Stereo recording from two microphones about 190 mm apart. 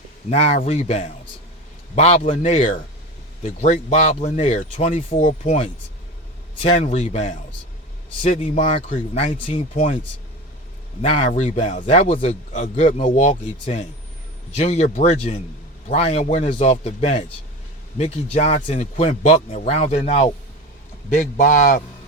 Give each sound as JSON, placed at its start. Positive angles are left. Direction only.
{"t": 0.3, "sound": "a man's voice", "side_deg": 35}
{"t": 9.7, "sound": "a man's voice", "side_deg": 45}
{"t": 11.0, "sound": "a man's voice", "side_deg": 35}
{"t": 21.1, "sound": "a man's voice", "side_deg": 40}